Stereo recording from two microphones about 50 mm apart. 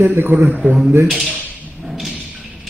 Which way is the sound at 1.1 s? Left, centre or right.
Centre.